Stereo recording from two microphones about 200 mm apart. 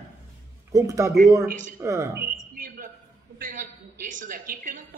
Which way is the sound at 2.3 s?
40° right (ahead or behind).